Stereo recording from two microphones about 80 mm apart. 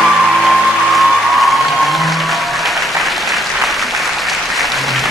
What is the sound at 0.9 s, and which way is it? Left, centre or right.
Applause, centre.